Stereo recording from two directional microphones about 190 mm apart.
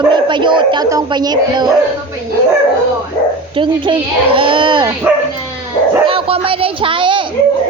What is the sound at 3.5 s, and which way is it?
A child's voice, 25° right (ahead or behind).